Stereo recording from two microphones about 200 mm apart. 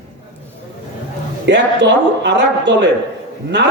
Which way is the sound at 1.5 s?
60° right (ahead or behind).